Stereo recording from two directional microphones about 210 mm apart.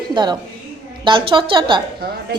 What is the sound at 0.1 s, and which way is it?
A woman's voice, 20° right (ahead or behind).